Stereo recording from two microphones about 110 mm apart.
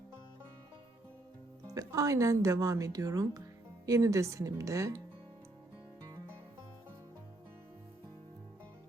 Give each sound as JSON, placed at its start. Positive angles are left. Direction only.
{"t": 1.6, "sound": "a woman's voice", "side_deg": -35}